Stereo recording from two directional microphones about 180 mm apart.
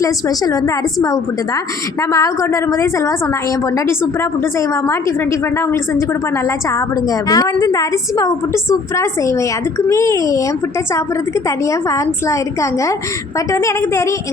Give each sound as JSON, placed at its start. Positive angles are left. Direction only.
{"t": 0.0, "sound": "a woman's voice", "side_deg": 20}
{"t": 2.0, "sound": "speech", "side_deg": 20}
{"t": 6.7, "sound": "a woman's voice", "side_deg": 20}
{"t": 11.4, "sound": "speech", "side_deg": 15}
{"t": 13.5, "sound": "speech", "side_deg": 15}